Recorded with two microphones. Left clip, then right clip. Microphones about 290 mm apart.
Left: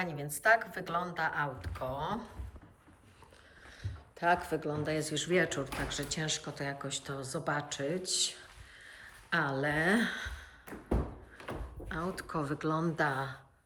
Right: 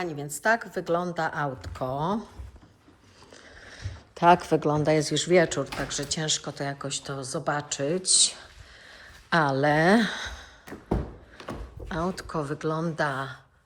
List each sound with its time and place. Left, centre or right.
0.0 s speech: centre
3.7 s speech: right
11.9 s speech: centre